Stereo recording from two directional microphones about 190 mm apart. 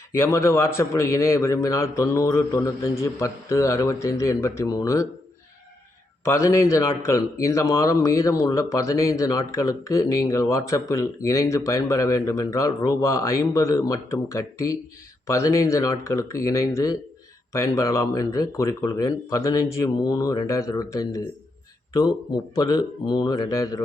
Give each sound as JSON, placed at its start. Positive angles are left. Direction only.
{"t": 0.2, "sound": "a man's voice", "side_deg": 15}
{"t": 6.2, "sound": "a man's voice", "side_deg": 15}
{"t": 22.5, "sound": "speech", "side_deg": 20}